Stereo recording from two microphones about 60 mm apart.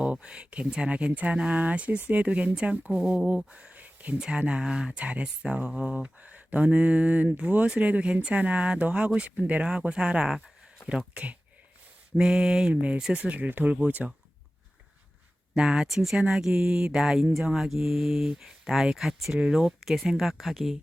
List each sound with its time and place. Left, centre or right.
0.0 s speech: centre
15.5 s speech: centre